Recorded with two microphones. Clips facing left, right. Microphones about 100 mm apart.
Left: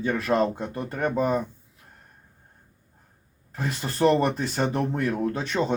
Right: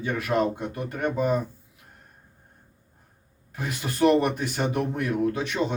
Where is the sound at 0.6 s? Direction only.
35° left (ahead or behind).